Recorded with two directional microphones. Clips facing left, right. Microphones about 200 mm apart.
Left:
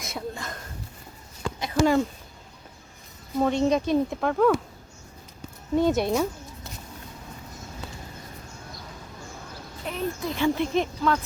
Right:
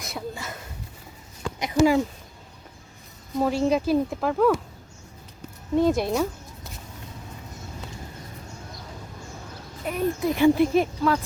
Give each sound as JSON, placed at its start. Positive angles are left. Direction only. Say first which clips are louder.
{"t": 0.0, "sound": "a sound", "louder": "even", "side_deg": 0}
{"t": 3.3, "sound": "speech", "louder": "even", "side_deg": -5}
{"t": 5.7, "sound": "speech", "louder": "right 1 dB", "side_deg": 0}
{"t": 9.8, "sound": "speech", "louder": "right 5 dB", "side_deg": -10}